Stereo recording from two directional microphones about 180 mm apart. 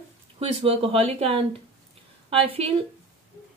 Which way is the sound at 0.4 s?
30° right (ahead or behind).